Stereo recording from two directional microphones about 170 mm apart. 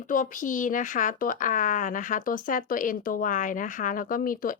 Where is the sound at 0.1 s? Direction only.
55° left (ahead or behind).